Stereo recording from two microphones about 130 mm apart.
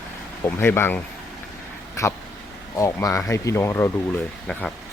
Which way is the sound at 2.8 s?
25° left (ahead or behind).